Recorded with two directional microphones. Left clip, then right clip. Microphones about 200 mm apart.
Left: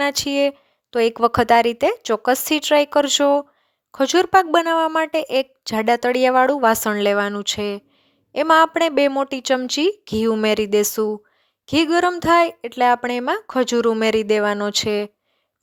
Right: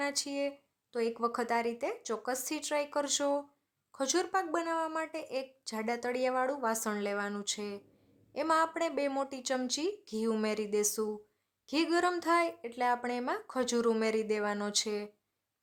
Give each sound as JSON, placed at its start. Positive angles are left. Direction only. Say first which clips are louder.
{"t": 0.0, "sound": "a woman's voice", "louder": "left 15 dB", "side_deg": 45}